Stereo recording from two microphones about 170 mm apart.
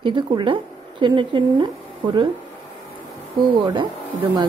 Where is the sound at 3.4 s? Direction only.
25° right (ahead or behind).